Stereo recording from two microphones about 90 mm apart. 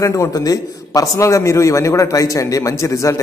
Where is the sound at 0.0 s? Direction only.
35° left (ahead or behind).